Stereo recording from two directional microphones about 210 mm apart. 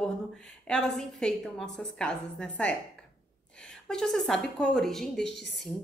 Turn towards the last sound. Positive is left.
turn(degrees=55)  # may be behind; listen again after turning